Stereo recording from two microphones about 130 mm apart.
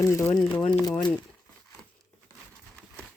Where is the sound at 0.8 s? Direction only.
30° left (ahead or behind).